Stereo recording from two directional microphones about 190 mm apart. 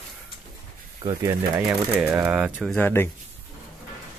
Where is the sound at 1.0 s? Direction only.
15° right (ahead or behind).